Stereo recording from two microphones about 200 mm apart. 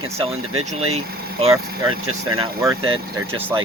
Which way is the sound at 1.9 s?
90° right.